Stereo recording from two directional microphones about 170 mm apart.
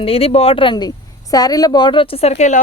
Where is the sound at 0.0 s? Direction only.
35° left (ahead or behind).